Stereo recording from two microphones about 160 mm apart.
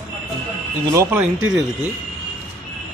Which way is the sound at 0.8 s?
15° right (ahead or behind).